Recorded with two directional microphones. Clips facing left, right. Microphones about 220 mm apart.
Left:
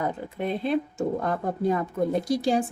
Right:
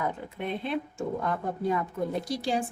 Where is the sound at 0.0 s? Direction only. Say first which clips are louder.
Left 4 dB; 40° left (ahead or behind).